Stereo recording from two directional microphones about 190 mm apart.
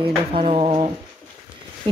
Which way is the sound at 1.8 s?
25° right (ahead or behind).